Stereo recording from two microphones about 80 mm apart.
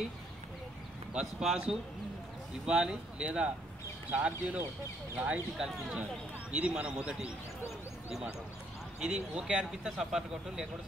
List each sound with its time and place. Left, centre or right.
1.1 s speech: centre
6.5 s speech: centre
9.0 s speech: centre